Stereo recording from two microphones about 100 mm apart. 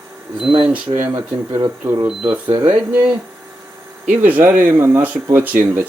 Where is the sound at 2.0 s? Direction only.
60° right (ahead or behind).